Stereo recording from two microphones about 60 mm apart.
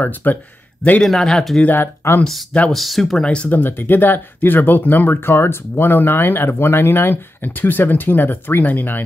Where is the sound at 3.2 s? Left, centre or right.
Left.